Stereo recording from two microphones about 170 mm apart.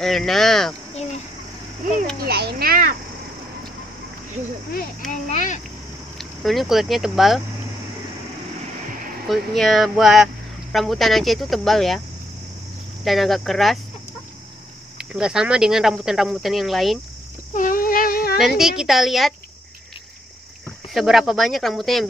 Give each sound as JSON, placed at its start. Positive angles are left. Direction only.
{"t": 0.0, "sound": "speech", "side_deg": 0}
{"t": 2.1, "sound": "a child's voice", "side_deg": -65}
{"t": 5.3, "sound": "a sound", "side_deg": 45}
{"t": 6.1, "sound": "speech", "side_deg": 0}
{"t": 9.3, "sound": "speech", "side_deg": 0}
{"t": 13.0, "sound": "speech", "side_deg": 0}
{"t": 15.0, "sound": "speech", "side_deg": -5}
{"t": 17.6, "sound": "a sound", "side_deg": 55}
{"t": 18.6, "sound": "speech", "side_deg": 0}
{"t": 20.9, "sound": "speech", "side_deg": 0}